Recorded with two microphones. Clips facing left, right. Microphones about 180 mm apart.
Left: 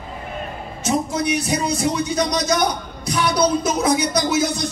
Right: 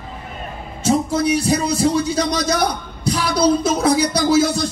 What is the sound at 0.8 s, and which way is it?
A man's voice, 30° right (ahead or behind).